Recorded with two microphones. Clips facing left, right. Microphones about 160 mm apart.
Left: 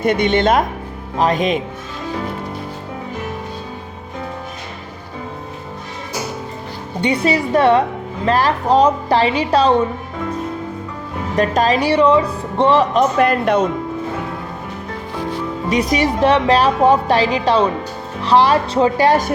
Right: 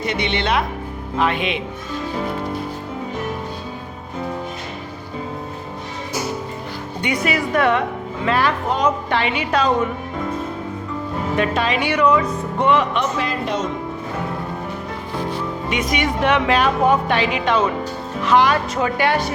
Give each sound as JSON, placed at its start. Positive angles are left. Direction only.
{"t": 0.0, "sound": "a woman's voice", "side_deg": 50}
{"t": 7.0, "sound": "a woman's voice", "side_deg": 30}
{"t": 11.3, "sound": "a woman's voice", "side_deg": 40}
{"t": 13.1, "sound": "speech", "side_deg": 60}
{"t": 15.7, "sound": "a woman's voice", "side_deg": 35}